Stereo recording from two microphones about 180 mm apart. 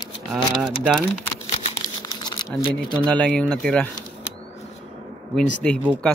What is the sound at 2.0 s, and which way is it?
Crumpling, 25° left (ahead or behind).